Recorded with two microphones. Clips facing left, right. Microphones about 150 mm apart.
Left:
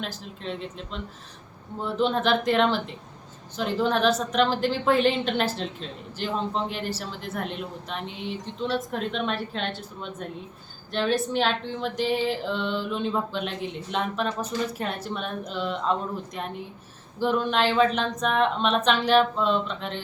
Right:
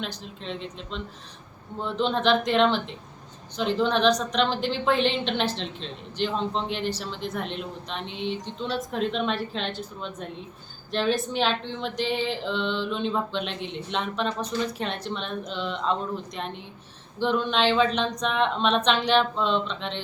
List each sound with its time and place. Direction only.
0.0 s a woman's voice: 5° left (ahead or behind)